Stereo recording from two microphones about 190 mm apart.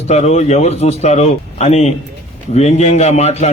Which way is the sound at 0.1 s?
35° left (ahead or behind).